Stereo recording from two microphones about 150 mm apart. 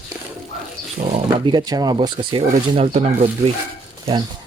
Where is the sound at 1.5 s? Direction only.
25° right (ahead or behind).